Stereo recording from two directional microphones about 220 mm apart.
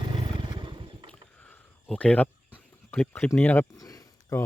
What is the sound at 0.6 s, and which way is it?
Motorcycle, 20° right (ahead or behind).